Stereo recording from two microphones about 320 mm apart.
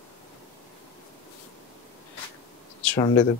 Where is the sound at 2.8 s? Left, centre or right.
Centre.